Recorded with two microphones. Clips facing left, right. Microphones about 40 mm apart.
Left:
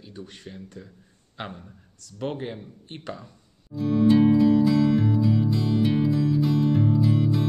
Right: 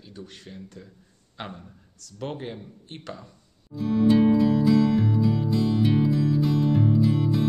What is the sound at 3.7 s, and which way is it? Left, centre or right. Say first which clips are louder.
Music: left 1 dB; centre.